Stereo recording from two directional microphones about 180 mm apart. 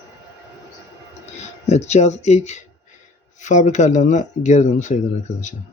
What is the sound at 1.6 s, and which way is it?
A man's voice, 40° left (ahead or behind).